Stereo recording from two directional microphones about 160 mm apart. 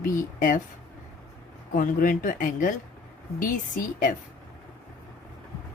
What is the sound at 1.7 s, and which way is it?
Speech, 60° left (ahead or behind).